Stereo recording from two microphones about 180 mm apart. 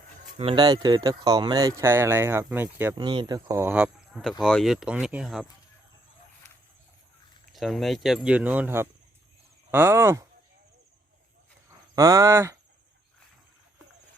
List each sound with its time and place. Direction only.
0.3 s speech: 30° right (ahead or behind); by 2.9 s 10° right (ahead or behind)
2.9 s speech: 25° right (ahead or behind); by 5.5 s 5° right (ahead or behind)
7.5 s speech: centre (ahead or behind)
11.9 s speech: 20° right (ahead or behind)